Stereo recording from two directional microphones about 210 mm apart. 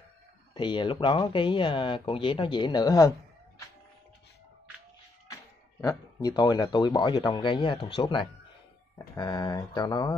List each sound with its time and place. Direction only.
0.6 s speech: 20° left (ahead or behind)
5.8 s speech: 15° left (ahead or behind)